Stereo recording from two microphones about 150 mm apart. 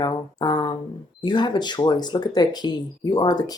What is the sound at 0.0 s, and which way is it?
Speech, 30° left (ahead or behind).